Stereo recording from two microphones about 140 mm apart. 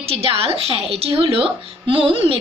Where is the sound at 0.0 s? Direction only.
45° right (ahead or behind).